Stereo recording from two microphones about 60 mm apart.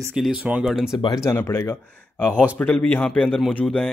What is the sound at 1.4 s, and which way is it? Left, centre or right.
Speech, left.